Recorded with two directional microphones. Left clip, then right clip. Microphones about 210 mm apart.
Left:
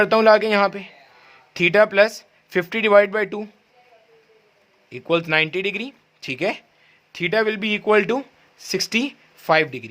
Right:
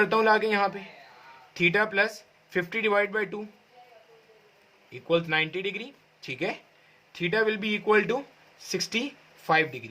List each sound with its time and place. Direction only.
0.0 s speech: 50° left (ahead or behind)
4.9 s speech: 55° left (ahead or behind)